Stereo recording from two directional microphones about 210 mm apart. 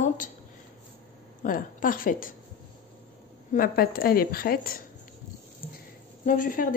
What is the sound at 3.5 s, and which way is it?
A woman's voice, 45° left (ahead or behind).